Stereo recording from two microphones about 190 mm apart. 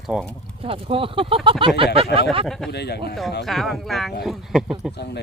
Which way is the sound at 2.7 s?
60° left (ahead or behind).